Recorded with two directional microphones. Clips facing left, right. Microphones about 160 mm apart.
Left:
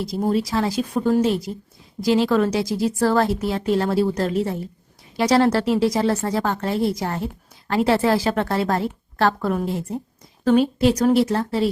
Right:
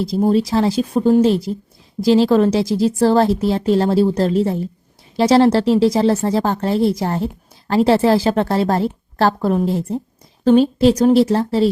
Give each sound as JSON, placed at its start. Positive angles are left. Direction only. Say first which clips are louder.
{"t": 0.0, "sound": "a woman's voice", "louder": "right 6 dB", "side_deg": -25}